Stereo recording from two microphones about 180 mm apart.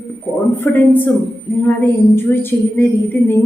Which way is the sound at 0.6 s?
10° left (ahead or behind).